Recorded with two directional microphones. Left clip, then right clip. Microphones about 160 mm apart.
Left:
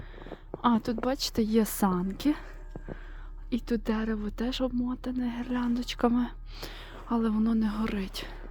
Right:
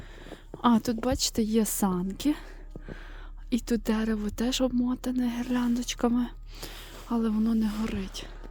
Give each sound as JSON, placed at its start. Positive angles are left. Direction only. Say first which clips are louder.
{"t": 0.3, "sound": "speech", "louder": "right 2 dB", "side_deg": -35}
{"t": 3.5, "sound": "speech", "louder": "right 2 dB", "side_deg": -35}